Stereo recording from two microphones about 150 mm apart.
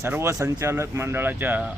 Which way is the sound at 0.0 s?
15° right (ahead or behind).